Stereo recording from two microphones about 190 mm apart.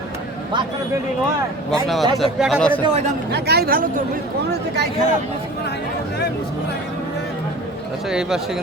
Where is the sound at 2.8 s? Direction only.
35° right (ahead or behind).